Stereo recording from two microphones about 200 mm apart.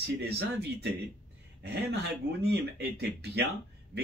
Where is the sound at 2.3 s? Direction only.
55° right (ahead or behind).